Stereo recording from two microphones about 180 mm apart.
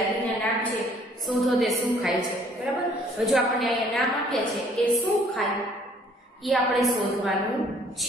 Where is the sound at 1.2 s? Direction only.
Centre (ahead or behind).